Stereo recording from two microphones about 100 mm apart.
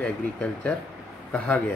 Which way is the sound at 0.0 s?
15° left (ahead or behind).